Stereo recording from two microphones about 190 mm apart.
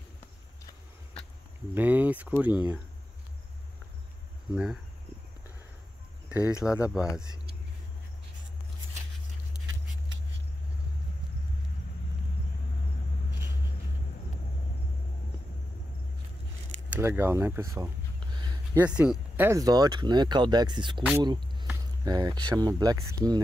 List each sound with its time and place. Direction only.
1.8 s speech: 10° right (ahead or behind)
6.2 s speech: 5° right (ahead or behind)
16.9 s speech: 10° right (ahead or behind)